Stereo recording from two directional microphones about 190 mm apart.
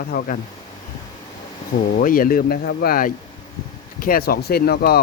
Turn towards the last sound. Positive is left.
turn(degrees=55)  # may be behind; listen again after turning